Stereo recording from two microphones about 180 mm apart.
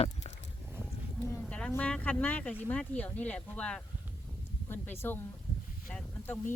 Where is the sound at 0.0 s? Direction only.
35° left (ahead or behind).